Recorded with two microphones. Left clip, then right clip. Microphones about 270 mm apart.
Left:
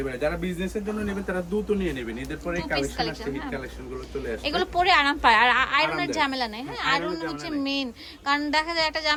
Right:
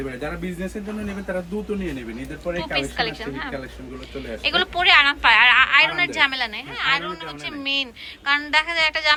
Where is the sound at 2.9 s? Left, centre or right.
Centre.